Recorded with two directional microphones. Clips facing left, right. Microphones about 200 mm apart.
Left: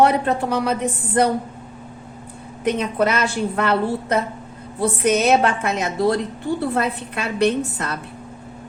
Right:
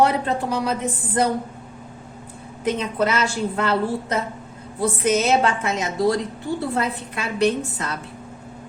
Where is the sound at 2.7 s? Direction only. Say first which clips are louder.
Left 2 dB; 60° left (ahead or behind).